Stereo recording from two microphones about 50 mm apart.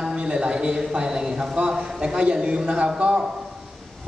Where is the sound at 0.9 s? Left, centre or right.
Centre.